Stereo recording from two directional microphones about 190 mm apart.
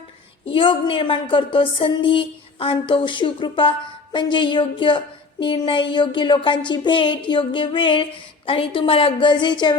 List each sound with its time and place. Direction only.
0.4 s a woman's voice: 25° left (ahead or behind)